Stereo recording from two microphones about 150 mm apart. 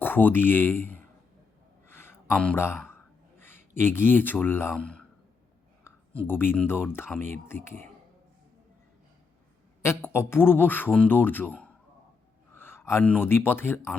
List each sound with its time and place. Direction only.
0.0 s speech: 10° left (ahead or behind)
1.9 s a sound: 15° left (ahead or behind)
5.8 s a man's voice: 15° left (ahead or behind)
9.8 s a man's voice: 15° left (ahead or behind)